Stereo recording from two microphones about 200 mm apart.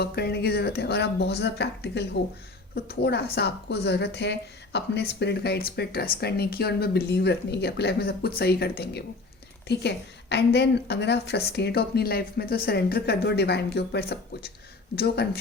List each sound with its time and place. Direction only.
0.0 s a woman's voice: 55° left (ahead or behind)